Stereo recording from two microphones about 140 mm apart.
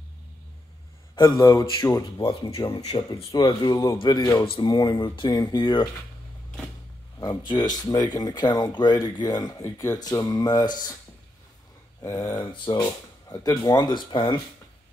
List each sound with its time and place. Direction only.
1.1 s speech: 30° left (ahead or behind)
2.2 s speech: 40° left (ahead or behind)
7.2 s speech: 30° left (ahead or behind)
12.0 s speech: 20° left (ahead or behind)